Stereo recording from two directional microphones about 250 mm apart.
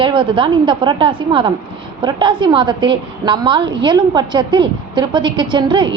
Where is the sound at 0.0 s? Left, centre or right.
Centre.